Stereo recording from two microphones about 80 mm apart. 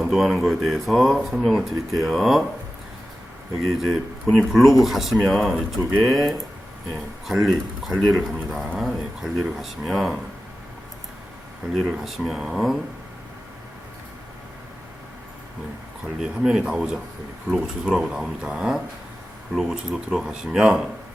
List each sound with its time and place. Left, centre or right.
0.0 s speech: centre
3.6 s speech: centre
11.7 s speech: centre
16.1 s speech: centre